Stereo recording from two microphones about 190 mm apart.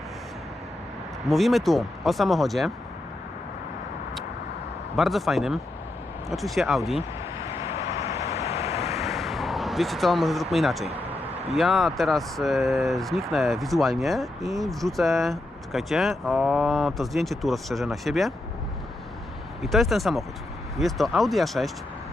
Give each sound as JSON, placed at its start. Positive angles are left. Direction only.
{"t": 1.3, "sound": "speech", "side_deg": 0}
{"t": 4.9, "sound": "speech", "side_deg": 0}
{"t": 7.4, "sound": "vehicle", "side_deg": -15}
{"t": 8.4, "sound": "vehicle", "side_deg": 35}
{"t": 9.0, "sound": "a sound", "side_deg": 0}
{"t": 11.5, "sound": "speech", "side_deg": 0}
{"t": 19.6, "sound": "speech", "side_deg": 0}